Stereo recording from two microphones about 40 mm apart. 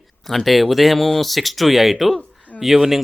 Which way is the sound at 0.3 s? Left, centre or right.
Centre.